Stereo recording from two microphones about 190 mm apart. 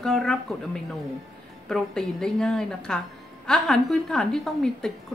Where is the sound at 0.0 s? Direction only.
Centre (ahead or behind).